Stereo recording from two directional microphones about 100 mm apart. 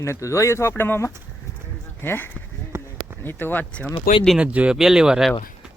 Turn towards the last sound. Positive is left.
turn(degrees=-5)  # may be behind; listen again after turning